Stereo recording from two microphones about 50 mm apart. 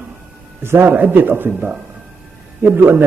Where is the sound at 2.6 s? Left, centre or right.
Right.